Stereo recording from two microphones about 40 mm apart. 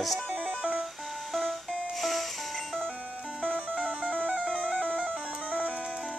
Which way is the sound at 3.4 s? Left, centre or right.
Right.